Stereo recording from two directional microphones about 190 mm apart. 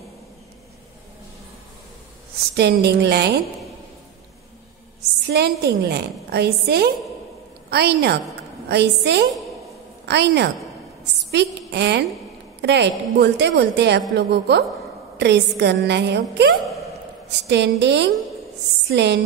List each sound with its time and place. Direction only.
2.5 s a woman's voice: 60° right (ahead or behind)
5.3 s a woman's voice: 60° right (ahead or behind)